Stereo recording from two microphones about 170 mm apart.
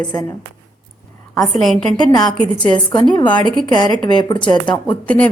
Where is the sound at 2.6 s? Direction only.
25° left (ahead or behind).